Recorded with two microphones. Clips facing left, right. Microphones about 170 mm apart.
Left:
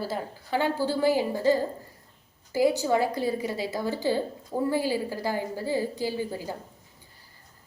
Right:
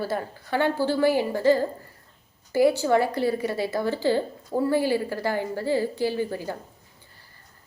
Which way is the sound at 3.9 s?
15° left (ahead or behind).